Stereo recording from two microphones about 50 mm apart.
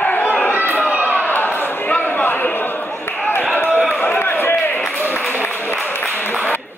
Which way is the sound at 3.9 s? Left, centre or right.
Left.